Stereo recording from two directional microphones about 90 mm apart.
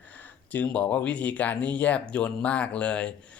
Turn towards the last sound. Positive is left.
turn(degrees=15)  # may be behind; listen again after turning